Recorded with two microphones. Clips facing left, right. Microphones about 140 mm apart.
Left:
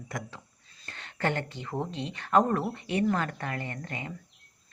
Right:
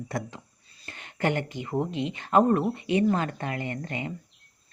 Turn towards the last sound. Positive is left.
turn(degrees=-20)  # may be behind; listen again after turning